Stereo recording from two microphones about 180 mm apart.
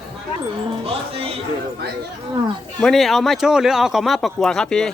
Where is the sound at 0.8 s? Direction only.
30° right (ahead or behind).